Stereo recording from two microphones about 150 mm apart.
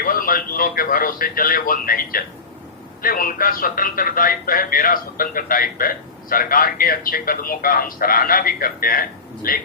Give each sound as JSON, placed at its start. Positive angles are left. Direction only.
{"t": 0.0, "sound": "speech", "side_deg": 70}